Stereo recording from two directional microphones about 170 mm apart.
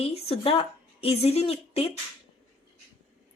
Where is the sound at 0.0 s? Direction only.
35° left (ahead or behind).